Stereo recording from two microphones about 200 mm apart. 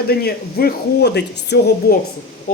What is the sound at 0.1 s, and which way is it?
Speech, 50° left (ahead or behind).